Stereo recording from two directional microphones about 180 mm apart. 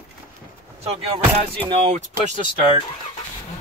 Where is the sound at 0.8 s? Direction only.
30° right (ahead or behind).